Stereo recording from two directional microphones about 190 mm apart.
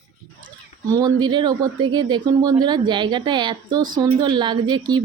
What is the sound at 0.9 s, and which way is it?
Speech, 20° right (ahead or behind).